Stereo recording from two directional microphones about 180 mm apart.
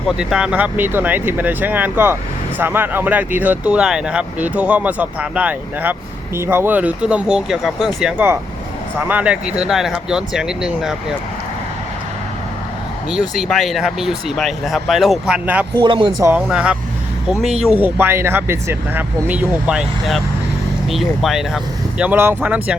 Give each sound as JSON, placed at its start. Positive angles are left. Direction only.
{"t": 0.2, "sound": "speech", "side_deg": -5}
{"t": 13.1, "sound": "speech", "side_deg": 0}
{"t": 15.7, "sound": "speech", "side_deg": -25}
{"t": 16.3, "sound": "speech", "side_deg": -5}